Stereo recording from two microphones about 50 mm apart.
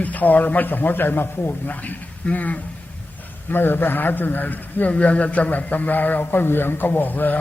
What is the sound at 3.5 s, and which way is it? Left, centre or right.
A man's voice, left.